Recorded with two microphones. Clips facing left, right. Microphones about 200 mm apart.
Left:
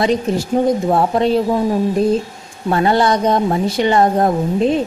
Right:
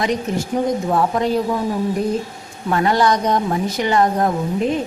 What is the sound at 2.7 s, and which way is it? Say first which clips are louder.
A woman's voice: left 2 dB; 25° left (ahead or behind).